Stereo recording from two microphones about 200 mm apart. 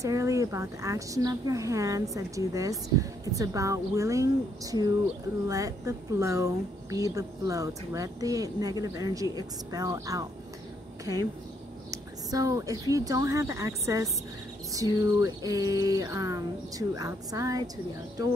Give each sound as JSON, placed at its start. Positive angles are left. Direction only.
{"t": 0.0, "sound": "speech", "side_deg": -15}
{"t": 11.9, "sound": "speech", "side_deg": -15}